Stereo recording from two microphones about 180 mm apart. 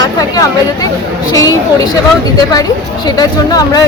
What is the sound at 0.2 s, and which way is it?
Speech, 20° left (ahead or behind).